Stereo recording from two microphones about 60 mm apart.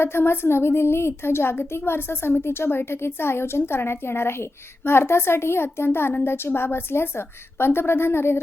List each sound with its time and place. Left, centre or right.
0.0 s a woman's voice: left